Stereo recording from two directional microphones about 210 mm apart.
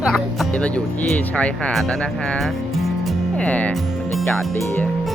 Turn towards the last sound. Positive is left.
turn(degrees=5)  # may be behind; listen again after turning